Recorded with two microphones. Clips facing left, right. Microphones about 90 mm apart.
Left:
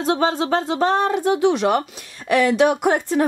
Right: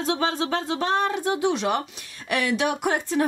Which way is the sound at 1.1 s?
60° left (ahead or behind).